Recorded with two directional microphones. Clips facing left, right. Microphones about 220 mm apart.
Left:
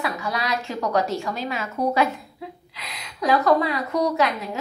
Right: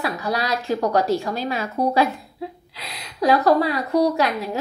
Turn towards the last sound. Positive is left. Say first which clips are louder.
# right 3 dB
turn(degrees=-35)  # may be behind; listen again after turning